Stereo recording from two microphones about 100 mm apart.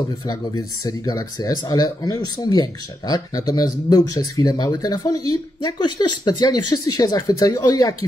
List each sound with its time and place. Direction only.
0.3 s speech: 40° left (ahead or behind)